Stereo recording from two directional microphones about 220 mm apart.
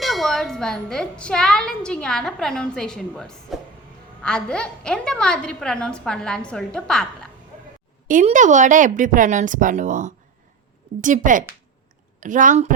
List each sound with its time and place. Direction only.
0.0 s a woman's voice: centre (ahead or behind)
8.0 s speech: 35° right (ahead or behind)